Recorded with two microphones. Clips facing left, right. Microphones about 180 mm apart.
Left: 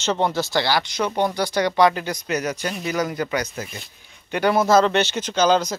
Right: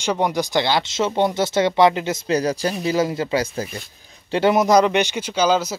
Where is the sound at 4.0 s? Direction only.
35° right (ahead or behind).